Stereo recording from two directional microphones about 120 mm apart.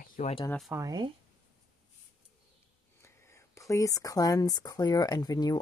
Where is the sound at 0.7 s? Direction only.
30° right (ahead or behind).